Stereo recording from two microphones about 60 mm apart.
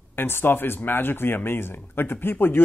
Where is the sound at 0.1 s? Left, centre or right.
Left.